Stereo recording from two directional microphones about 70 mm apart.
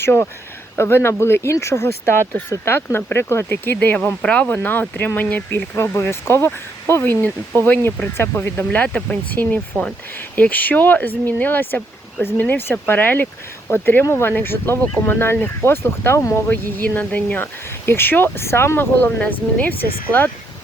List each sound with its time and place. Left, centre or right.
0.0 s speech: left
4.2 s speech: centre
4.4 s speech: left
5.7 s speech: left
8.9 s speech: centre